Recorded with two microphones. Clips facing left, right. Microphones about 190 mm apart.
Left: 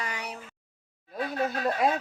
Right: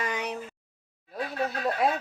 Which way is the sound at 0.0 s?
20° right (ahead or behind).